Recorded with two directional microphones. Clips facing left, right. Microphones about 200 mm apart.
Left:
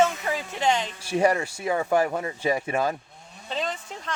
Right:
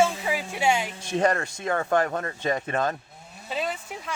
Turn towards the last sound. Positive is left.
turn(degrees=-10)  # may be behind; listen again after turning